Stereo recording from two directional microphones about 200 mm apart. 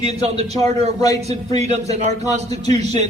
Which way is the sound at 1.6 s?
35° right (ahead or behind).